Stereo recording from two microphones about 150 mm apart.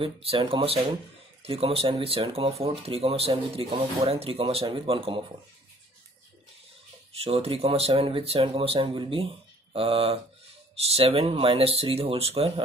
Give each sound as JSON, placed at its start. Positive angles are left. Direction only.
{"t": 0.0, "sound": "speech", "side_deg": -40}
{"t": 7.1, "sound": "a sound", "side_deg": -40}
{"t": 7.4, "sound": "speech", "side_deg": -40}